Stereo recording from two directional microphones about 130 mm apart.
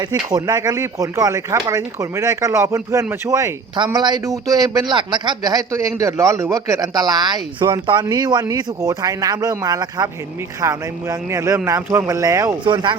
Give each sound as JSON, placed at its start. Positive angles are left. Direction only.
{"t": 0.0, "sound": "a man's voice", "side_deg": -30}
{"t": 12.6, "sound": "a man's voice", "side_deg": -35}